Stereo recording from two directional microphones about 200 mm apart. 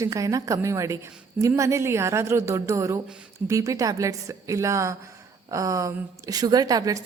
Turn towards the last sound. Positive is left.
turn(degrees=-15)  # may be behind; listen again after turning